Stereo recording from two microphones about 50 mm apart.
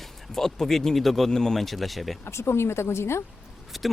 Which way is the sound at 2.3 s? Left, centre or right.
Left.